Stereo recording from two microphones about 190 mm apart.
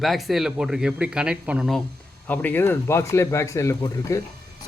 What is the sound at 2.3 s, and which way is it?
Speech, 10° left (ahead or behind).